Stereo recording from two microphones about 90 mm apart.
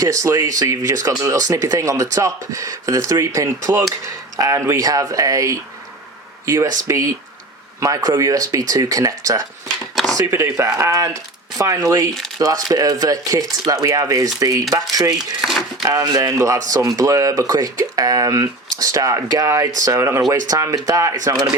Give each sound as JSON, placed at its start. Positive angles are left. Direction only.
{"t": 0.0, "sound": "speech", "side_deg": -40}
{"t": 9.9, "sound": "chop", "side_deg": 5}
{"t": 10.2, "sound": "speech", "side_deg": -30}
{"t": 15.8, "sound": "speech", "side_deg": -40}